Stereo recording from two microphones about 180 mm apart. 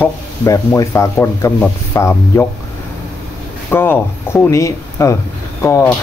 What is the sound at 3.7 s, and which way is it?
Speech, 10° left (ahead or behind).